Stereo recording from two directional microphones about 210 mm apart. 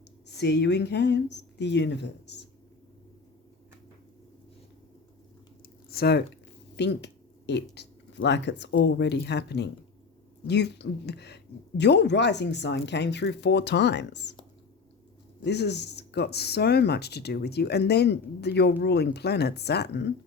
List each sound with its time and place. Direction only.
0.3 s speech: 55° left (ahead or behind)
5.9 s speech: 50° left (ahead or behind)
15.4 s speech: 55° left (ahead or behind)